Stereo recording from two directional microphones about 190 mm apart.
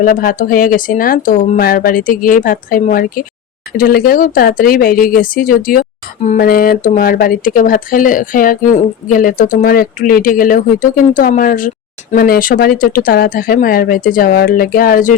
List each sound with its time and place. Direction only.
0.0 s speech: 45° left (ahead or behind)